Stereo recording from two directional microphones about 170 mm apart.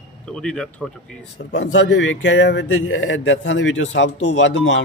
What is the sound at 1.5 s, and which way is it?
Speech, 90° left.